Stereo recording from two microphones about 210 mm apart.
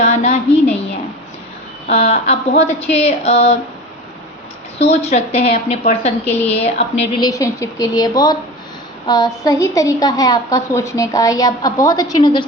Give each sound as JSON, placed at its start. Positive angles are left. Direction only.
{"t": 0.0, "sound": "a sound", "side_deg": 30}
{"t": 1.9, "sound": "speech", "side_deg": 30}
{"t": 4.8, "sound": "a woman's voice", "side_deg": 30}
{"t": 6.2, "sound": "a woman's voice", "side_deg": 10}
{"t": 6.5, "sound": "speech", "side_deg": 30}
{"t": 7.2, "sound": "a woman's voice", "side_deg": 15}